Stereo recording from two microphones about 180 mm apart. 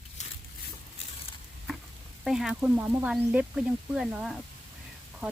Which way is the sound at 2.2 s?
Centre (ahead or behind).